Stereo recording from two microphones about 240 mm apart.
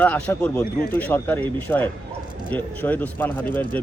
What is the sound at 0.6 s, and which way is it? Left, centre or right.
Speech, left.